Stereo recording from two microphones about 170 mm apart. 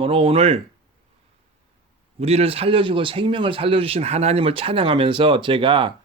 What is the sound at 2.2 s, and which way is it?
A man's voice, 35° right (ahead or behind).